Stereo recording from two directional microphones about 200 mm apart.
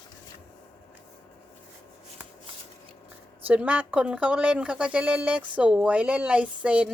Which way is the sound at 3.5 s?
5° right (ahead or behind).